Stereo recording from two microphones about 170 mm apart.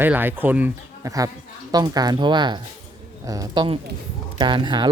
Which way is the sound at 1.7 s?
25° right (ahead or behind).